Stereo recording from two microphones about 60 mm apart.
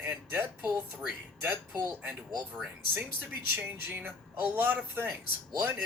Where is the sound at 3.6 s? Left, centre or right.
Right.